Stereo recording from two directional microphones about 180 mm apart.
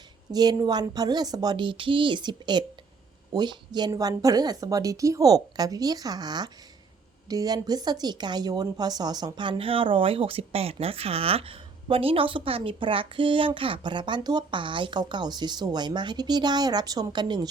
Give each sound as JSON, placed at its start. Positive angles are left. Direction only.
{"t": 0.3, "sound": "a woman's voice", "side_deg": -20}